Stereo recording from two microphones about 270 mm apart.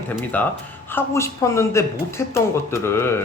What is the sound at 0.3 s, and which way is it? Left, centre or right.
Speech, centre.